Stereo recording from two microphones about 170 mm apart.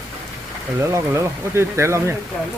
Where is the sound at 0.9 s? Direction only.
15° right (ahead or behind).